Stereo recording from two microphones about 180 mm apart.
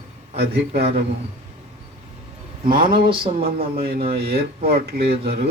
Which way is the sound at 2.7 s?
30° right (ahead or behind).